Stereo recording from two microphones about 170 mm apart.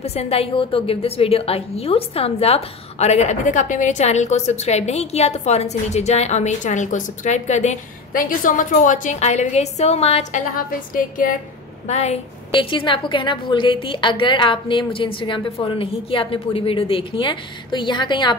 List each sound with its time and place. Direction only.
0.0 s a woman's voice: 35° left (ahead or behind)
10.5 s a woman's voice: 50° left (ahead or behind)
11.9 s a woman's voice: 40° left (ahead or behind)
12.5 s a woman's voice: 30° left (ahead or behind)